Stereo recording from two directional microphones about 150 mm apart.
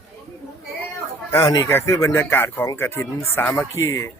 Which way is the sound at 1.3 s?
25° left (ahead or behind).